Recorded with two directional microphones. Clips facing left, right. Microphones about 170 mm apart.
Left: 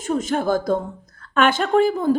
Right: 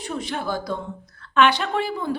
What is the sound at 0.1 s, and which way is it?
A woman's voice, 45° left (ahead or behind).